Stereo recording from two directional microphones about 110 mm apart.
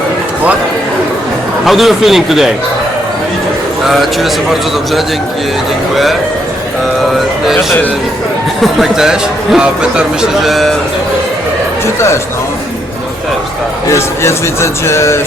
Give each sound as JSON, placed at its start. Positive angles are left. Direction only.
{"t": 1.6, "sound": "speech", "side_deg": 0}
{"t": 3.8, "sound": "speech", "side_deg": 0}
{"t": 8.6, "sound": "speech", "side_deg": -5}
{"t": 11.9, "sound": "speech", "side_deg": 25}
{"t": 13.9, "sound": "speech", "side_deg": 25}